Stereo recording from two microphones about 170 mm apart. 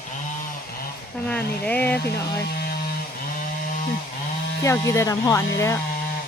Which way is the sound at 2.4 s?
65° left (ahead or behind).